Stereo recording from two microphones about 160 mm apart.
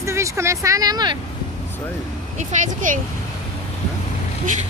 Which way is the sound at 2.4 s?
55° right (ahead or behind).